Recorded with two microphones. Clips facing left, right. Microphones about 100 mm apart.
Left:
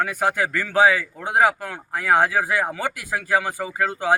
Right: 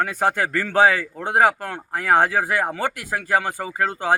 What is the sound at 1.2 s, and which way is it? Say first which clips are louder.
Speech: right 1 dB; 5° left (ahead or behind).